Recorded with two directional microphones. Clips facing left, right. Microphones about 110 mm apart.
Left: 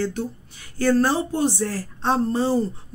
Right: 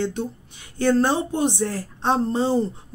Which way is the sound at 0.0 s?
20° right (ahead or behind).